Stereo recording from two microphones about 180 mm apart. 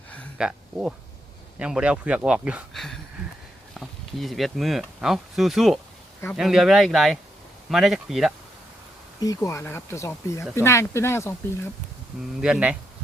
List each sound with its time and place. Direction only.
0.3 s speech: 5° right (ahead or behind)
9.2 s speech: 20° left (ahead or behind)
12.4 s speech: 5° right (ahead or behind)